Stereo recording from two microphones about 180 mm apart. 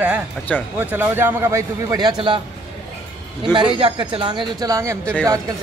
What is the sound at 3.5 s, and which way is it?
Speech, 30° right (ahead or behind).